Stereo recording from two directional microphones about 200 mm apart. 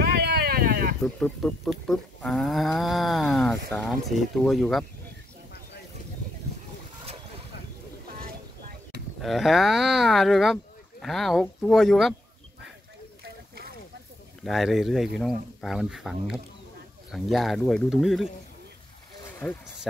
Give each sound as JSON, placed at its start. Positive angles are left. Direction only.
{"t": 0.0, "sound": "a sound", "side_deg": -55}
{"t": 1.0, "sound": "speech", "side_deg": 0}
{"t": 9.2, "sound": "speech", "side_deg": 0}
{"t": 14.4, "sound": "speech", "side_deg": 0}
{"t": 19.4, "sound": "speech", "side_deg": 5}